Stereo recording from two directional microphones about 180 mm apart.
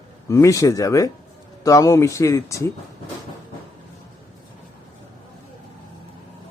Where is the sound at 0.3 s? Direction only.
15° left (ahead or behind).